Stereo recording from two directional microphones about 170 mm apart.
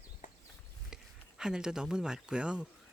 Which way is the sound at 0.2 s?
50° left (ahead or behind).